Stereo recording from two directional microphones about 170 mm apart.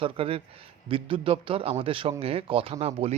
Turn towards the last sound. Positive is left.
turn(degrees=-35)  # may be behind; listen again after turning